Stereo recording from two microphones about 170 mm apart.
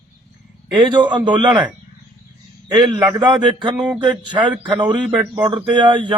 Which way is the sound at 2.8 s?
25° right (ahead or behind).